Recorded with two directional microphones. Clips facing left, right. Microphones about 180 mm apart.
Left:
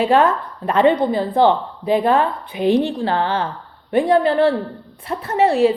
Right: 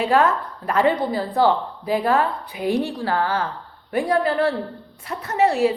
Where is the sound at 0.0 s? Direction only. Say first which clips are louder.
Left 3 dB; 30° left (ahead or behind).